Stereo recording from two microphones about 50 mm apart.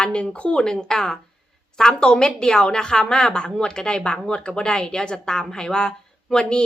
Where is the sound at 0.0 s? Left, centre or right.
Left.